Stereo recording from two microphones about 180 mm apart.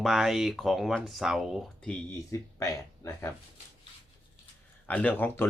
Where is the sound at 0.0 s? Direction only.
Centre (ahead or behind).